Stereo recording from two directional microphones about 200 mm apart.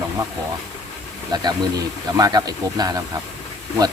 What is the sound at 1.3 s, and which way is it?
A man's voice, 20° right (ahead or behind).